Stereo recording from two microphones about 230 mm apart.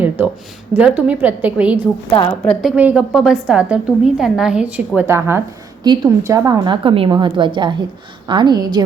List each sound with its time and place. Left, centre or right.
0.7 s a woman's voice: centre